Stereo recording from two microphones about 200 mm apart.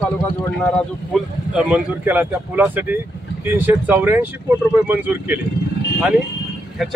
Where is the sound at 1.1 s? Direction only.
5° right (ahead or behind).